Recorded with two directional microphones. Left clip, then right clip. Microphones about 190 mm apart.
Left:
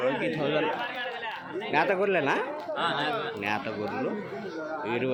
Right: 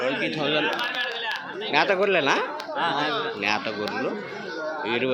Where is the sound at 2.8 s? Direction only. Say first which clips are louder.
Right 4 dB; 35° right (ahead or behind).